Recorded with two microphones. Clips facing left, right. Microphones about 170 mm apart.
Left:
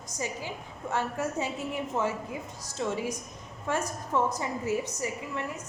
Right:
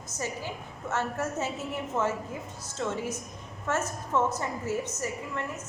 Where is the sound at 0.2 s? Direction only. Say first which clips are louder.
Even; 15° left (ahead or behind).